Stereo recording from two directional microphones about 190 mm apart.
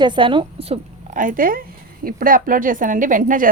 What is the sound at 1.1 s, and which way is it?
A woman's voice, 45° right (ahead or behind).